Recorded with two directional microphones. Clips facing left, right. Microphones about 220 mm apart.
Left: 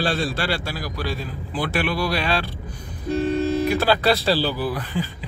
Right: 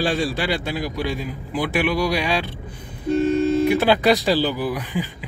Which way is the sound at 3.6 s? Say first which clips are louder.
Right 3 dB; 20° right (ahead or behind).